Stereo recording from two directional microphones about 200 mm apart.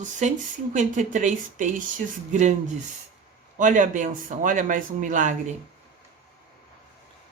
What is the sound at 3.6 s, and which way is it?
Speech, 40° right (ahead or behind).